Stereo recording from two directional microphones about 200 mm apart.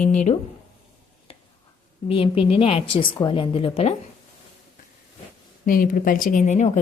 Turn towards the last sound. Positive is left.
turn(degrees=35)  # may be behind; listen again after turning